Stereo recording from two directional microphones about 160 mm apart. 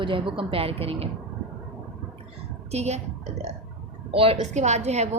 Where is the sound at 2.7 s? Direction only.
45° right (ahead or behind).